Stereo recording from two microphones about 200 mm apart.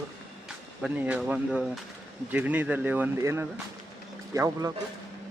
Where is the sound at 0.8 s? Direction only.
5° right (ahead or behind).